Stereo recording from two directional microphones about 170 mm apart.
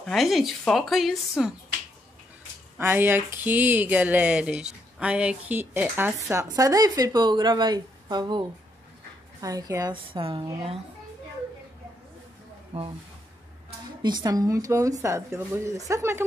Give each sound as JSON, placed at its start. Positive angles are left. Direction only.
{"t": 0.0, "sound": "speech", "side_deg": 0}
{"t": 2.8, "sound": "a woman's voice", "side_deg": -10}
{"t": 12.7, "sound": "speech", "side_deg": -35}
{"t": 14.0, "sound": "speech", "side_deg": -25}